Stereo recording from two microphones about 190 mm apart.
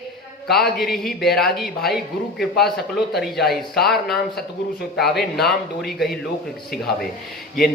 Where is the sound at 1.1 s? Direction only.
55° left (ahead or behind).